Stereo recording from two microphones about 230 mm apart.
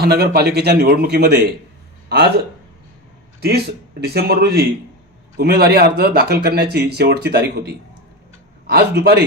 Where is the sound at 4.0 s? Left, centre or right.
Right.